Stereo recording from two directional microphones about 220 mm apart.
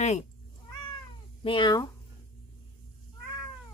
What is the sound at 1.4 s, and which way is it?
Speech, 20° left (ahead or behind).